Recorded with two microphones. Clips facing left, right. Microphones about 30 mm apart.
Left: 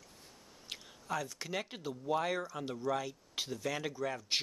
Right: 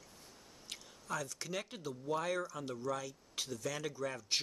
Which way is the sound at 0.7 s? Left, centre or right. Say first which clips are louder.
Left 2 dB; centre.